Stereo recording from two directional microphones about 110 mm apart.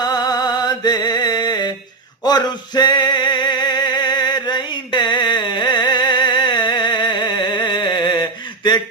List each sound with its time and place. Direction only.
0.0 s mantra: 35° left (ahead or behind)
2.2 s music: 40° left (ahead or behind)